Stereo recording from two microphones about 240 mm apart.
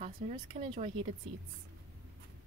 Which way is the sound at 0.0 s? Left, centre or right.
Right.